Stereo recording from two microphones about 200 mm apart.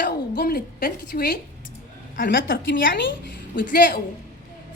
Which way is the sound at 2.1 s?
60° left (ahead or behind).